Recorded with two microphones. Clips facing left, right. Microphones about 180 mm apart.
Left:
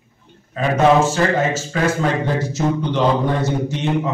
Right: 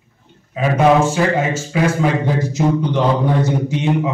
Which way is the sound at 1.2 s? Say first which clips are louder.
Right 1 dB; 10° right (ahead or behind).